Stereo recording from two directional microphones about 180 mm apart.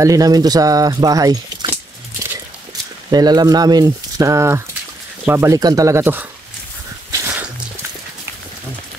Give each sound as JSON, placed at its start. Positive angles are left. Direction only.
{"t": 0.0, "sound": "speech", "side_deg": -20}
{"t": 3.1, "sound": "speech", "side_deg": -20}
{"t": 7.1, "sound": "a sound", "side_deg": -10}